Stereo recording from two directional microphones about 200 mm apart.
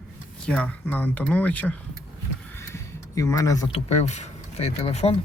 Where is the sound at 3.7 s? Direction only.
35° left (ahead or behind).